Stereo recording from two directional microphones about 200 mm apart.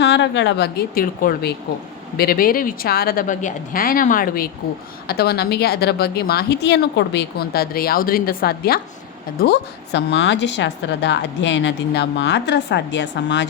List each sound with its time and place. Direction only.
0.0 s a woman's voice: 60° left (ahead or behind)